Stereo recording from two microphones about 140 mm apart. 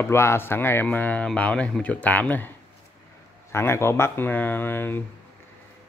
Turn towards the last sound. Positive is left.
turn(degrees=15)  # may be behind; listen again after turning